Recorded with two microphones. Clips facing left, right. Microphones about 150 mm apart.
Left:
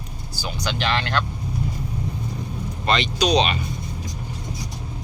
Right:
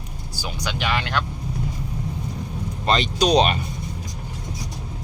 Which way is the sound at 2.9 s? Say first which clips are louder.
Right 1 dB; 45° right (ahead or behind).